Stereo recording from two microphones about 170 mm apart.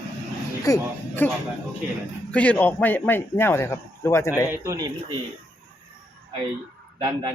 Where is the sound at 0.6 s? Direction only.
15° left (ahead or behind).